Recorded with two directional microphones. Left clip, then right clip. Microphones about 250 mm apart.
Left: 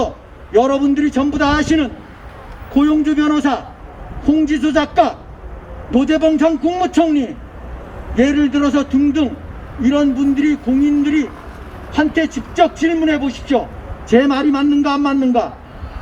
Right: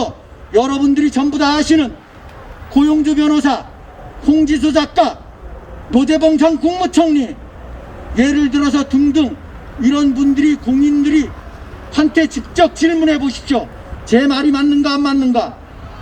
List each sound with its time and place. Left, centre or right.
0.5 s a man's voice: right